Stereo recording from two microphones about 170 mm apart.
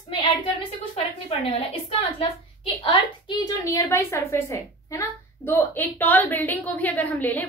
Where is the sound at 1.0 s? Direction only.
35° left (ahead or behind).